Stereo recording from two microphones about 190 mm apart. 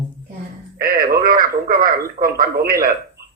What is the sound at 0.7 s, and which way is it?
Radio, 50° right (ahead or behind).